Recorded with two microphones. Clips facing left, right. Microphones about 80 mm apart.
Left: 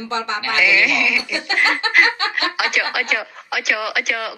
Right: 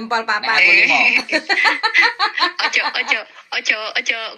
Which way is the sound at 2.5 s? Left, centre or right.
Left.